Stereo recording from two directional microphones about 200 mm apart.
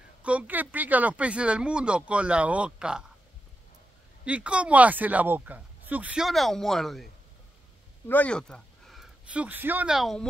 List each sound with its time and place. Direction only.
0.2 s speech: 5° right (ahead or behind)
4.2 s speech: 5° right (ahead or behind)
8.1 s speech: 5° left (ahead or behind)